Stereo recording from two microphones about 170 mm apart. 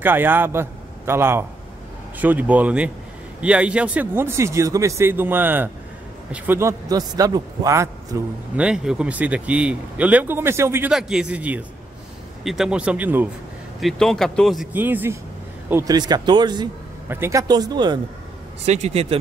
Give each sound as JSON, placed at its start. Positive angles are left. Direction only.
{"t": 0.0, "sound": "a man's voice", "side_deg": -10}
{"t": 8.5, "sound": "speech", "side_deg": -5}
{"t": 10.9, "sound": "speech", "side_deg": -5}
{"t": 13.7, "sound": "speech", "side_deg": 0}
{"t": 14.7, "sound": "speech", "side_deg": -10}
{"t": 15.7, "sound": "a man's voice", "side_deg": -20}
{"t": 18.7, "sound": "speech", "side_deg": -40}